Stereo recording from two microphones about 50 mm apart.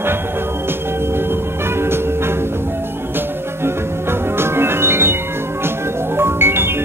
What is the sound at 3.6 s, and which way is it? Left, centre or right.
Music, right.